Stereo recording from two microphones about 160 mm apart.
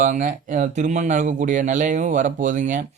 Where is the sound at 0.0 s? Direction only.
55° right (ahead or behind).